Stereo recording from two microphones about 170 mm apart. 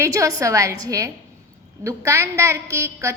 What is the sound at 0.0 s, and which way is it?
A woman's voice, 20° right (ahead or behind).